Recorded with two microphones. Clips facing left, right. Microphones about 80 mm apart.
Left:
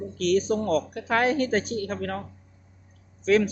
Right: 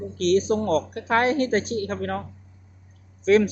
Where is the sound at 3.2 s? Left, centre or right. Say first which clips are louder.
Right 3 dB; centre.